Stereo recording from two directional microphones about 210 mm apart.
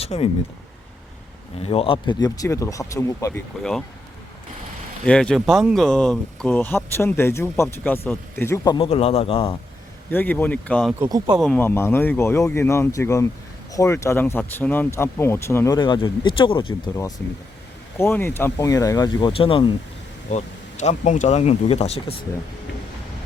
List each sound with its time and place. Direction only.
0.0 s speech: 30° left (ahead or behind)
1.5 s speech: 25° left (ahead or behind)
3.6 s speech: 5° left (ahead or behind)
5.0 s speech: 5° left (ahead or behind); by 9.6 s 25° left (ahead or behind)
10.1 s speech: 10° left (ahead or behind)
11.0 s speech: 20° right (ahead or behind)
11.3 s speech: 5° left (ahead or behind); by 17.1 s 25° left (ahead or behind)
17.9 s speech: 10° left (ahead or behind); by 22.1 s 30° left (ahead or behind)